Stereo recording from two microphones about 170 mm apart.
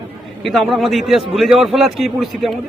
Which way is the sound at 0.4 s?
Centre (ahead or behind).